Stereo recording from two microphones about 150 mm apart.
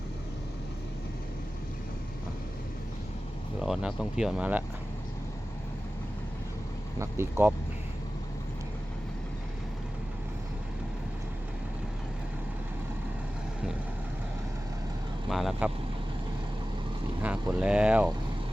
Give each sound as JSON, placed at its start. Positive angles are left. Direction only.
{"t": 3.6, "sound": "speech", "side_deg": -5}
{"t": 7.0, "sound": "speech", "side_deg": -15}
{"t": 15.3, "sound": "vehicle", "side_deg": 0}
{"t": 17.2, "sound": "a sound", "side_deg": -10}